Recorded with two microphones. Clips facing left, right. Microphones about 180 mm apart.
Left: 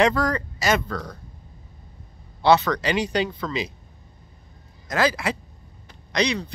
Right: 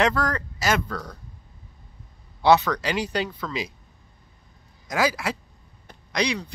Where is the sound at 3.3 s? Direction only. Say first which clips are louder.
Left 3 dB; 5° left (ahead or behind).